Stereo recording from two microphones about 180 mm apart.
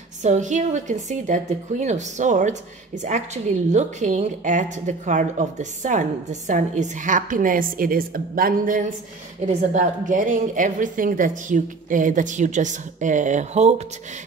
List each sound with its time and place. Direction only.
0.2 s a woman's voice: 40° right (ahead or behind)